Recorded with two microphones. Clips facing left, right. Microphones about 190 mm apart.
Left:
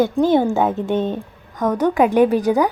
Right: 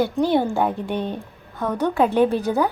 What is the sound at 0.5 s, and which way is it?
A woman's voice, 20° left (ahead or behind).